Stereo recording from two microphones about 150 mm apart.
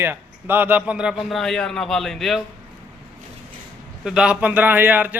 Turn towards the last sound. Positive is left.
turn(degrees=-10)  # may be behind; listen again after turning